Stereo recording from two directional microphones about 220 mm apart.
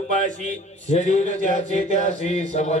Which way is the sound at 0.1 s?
35° right (ahead or behind).